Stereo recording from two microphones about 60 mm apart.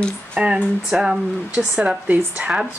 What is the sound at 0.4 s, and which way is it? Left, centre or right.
Speech, centre.